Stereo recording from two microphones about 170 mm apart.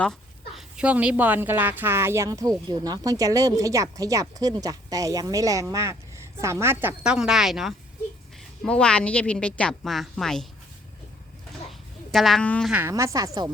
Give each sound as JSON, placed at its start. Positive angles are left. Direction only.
{"t": 0.0, "sound": "a woman's voice", "side_deg": 0}
{"t": 11.7, "sound": "a sound", "side_deg": 0}
{"t": 12.7, "sound": "speech", "side_deg": -15}